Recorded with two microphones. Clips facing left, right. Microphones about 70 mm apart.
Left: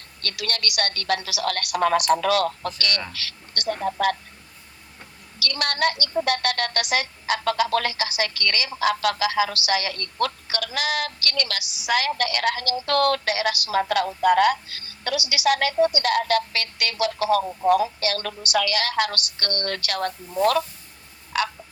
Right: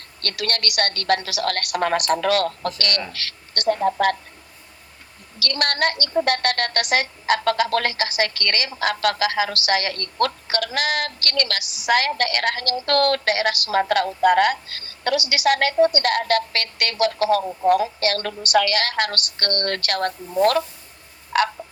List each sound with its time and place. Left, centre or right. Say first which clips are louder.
0.2 s a woman's voice: right 3 dB; right
5.4 s a woman's voice: right 2 dB; right
21.3 s frog: right 5 dB; right